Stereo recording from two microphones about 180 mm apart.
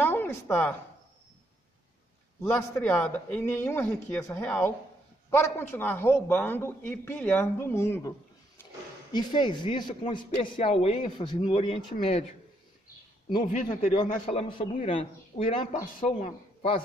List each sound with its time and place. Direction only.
0.0 s a sound: 10° left (ahead or behind)
2.5 s a man's voice: 5° left (ahead or behind)
9.1 s a man's voice: 25° left (ahead or behind)
13.7 s a man's voice: 45° left (ahead or behind)
14.2 s a man's voice: 30° left (ahead or behind)